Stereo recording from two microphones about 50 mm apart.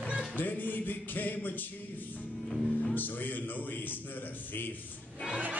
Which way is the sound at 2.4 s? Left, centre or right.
Centre.